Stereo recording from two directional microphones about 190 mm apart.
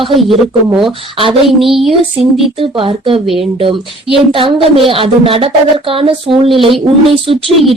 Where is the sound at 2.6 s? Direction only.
30° right (ahead or behind).